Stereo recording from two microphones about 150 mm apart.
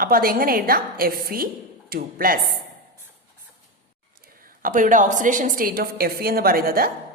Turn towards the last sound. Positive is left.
turn(degrees=-80)